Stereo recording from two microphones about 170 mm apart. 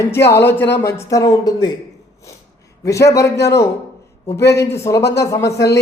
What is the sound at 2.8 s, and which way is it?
Speech, 20° left (ahead or behind).